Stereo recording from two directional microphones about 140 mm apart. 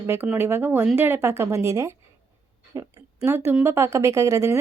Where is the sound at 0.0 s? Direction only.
15° right (ahead or behind).